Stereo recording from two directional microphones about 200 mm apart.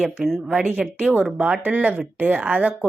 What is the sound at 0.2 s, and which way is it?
Speech, centre (ahead or behind).